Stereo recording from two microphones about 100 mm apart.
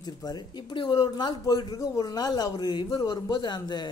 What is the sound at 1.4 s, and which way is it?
A man's voice, 35° left (ahead or behind).